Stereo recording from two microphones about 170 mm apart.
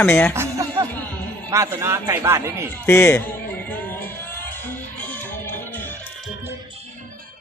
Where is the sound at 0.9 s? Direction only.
10° left (ahead or behind).